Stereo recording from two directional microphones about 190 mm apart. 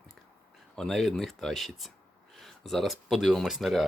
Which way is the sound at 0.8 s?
Centre (ahead or behind).